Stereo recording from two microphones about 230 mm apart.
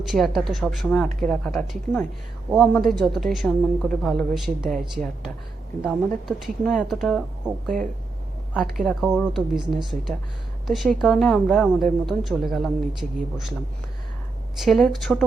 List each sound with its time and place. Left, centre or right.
0.0 s a woman's voice: centre
14.6 s a woman's voice: centre